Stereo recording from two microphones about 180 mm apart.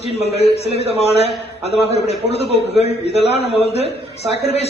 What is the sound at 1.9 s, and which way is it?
Speech, 35° left (ahead or behind).